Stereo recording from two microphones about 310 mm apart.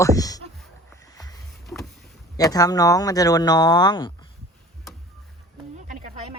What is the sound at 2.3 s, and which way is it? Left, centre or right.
Speech, centre.